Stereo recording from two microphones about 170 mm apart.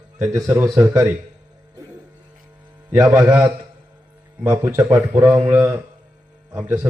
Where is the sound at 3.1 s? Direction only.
20° right (ahead or behind).